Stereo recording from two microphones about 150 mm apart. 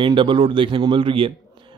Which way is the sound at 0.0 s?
35° right (ahead or behind).